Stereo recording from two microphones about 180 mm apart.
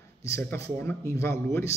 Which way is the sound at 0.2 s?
15° left (ahead or behind).